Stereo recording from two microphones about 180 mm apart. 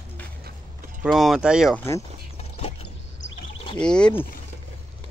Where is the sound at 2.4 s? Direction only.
35° left (ahead or behind).